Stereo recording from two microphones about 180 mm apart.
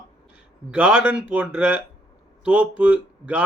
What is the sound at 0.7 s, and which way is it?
Speech, 5° right (ahead or behind).